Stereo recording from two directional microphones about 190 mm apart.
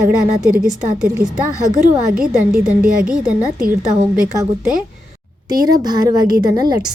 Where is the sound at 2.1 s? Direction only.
5° right (ahead or behind).